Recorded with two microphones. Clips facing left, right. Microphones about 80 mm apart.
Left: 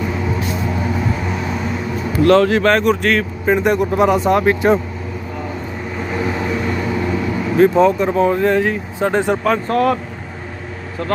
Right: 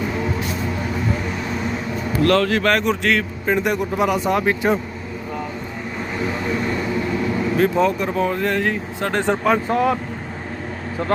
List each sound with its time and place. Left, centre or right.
2.2 s speech: centre
7.5 s speech: centre
9.4 s speech: centre